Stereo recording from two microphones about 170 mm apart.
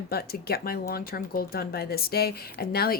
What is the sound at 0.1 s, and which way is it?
Speech, 65° left (ahead or behind).